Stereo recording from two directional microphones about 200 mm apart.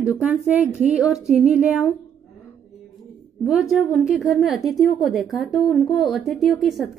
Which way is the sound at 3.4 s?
Centre (ahead or behind).